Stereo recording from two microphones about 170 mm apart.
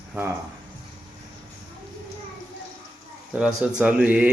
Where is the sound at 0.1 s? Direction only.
15° right (ahead or behind).